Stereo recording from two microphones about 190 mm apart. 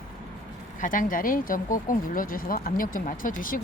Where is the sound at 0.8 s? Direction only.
45° left (ahead or behind).